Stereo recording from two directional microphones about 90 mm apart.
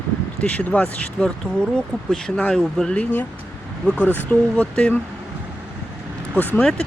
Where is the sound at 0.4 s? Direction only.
15° left (ahead or behind).